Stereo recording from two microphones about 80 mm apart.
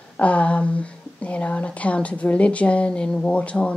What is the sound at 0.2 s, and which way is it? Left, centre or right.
A woman's voice, centre.